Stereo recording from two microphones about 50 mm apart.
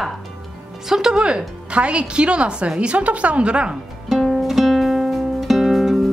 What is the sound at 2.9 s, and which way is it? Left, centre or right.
Speech, right.